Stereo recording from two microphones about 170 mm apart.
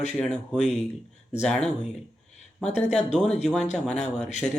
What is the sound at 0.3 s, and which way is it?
Speech, 40° left (ahead or behind).